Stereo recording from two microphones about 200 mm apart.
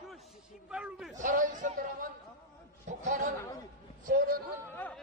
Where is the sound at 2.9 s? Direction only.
40° right (ahead or behind).